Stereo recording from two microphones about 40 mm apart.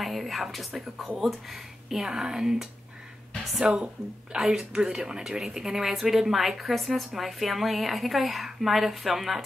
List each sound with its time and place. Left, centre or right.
0.0 s a woman's voice: centre
3.6 s a woman's voice: right; by 9.4 s centre